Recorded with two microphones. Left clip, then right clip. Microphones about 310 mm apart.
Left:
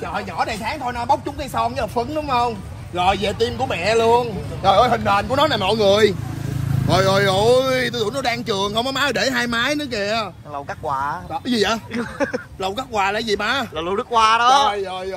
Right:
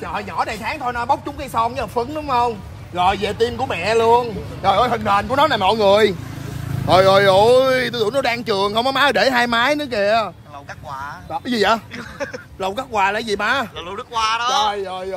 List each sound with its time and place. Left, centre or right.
0.0 s speech: centre
6.9 s speech: right
10.9 s speech: centre
11.3 s speech: centre
11.9 s speech: centre